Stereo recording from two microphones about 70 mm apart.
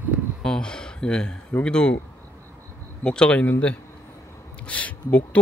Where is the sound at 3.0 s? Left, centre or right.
Centre.